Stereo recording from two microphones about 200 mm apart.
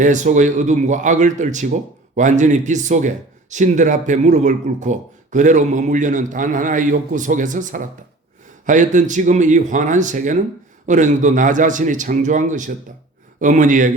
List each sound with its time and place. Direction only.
0.0 s speech: 40° right (ahead or behind)